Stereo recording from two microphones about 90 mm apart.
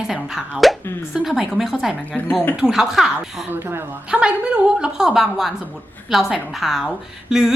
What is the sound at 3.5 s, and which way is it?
Speech, 25° right (ahead or behind).